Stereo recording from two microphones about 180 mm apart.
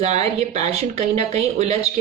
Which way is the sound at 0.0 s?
35° right (ahead or behind).